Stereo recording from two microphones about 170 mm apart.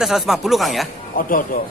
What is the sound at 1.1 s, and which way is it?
Speech, 55° left (ahead or behind).